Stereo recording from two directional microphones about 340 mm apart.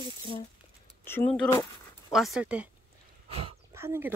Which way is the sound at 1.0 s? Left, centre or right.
Centre.